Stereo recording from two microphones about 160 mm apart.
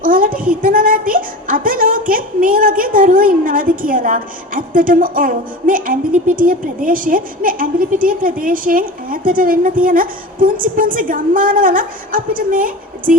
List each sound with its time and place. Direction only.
0.0 s a woman's voice: 60° right (ahead or behind)